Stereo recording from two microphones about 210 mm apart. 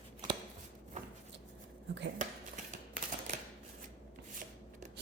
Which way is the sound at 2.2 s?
35° right (ahead or behind).